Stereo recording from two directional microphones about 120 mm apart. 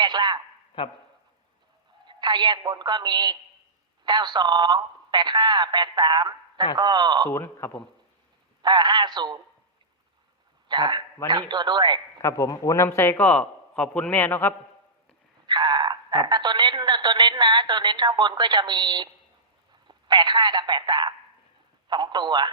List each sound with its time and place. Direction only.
0.0 s a sound: 35° right (ahead or behind)
0.8 s speech: 45° left (ahead or behind)
2.0 s a woman's voice: 40° right (ahead or behind)
7.3 s a man's voice: 20° left (ahead or behind)
8.6 s a woman's voice: 40° right (ahead or behind)
10.7 s a woman's voice: 40° right (ahead or behind)
12.2 s a man's voice: 25° left (ahead or behind)
15.4 s a woman's voice: 40° right (ahead or behind)